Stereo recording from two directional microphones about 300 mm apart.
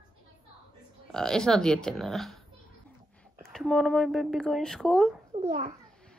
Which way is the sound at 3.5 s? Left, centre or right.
Centre.